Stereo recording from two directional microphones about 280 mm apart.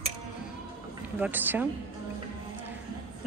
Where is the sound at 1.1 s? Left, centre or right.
Centre.